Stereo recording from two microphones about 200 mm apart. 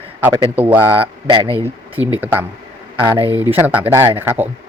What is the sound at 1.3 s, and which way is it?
Speech, 25° right (ahead or behind).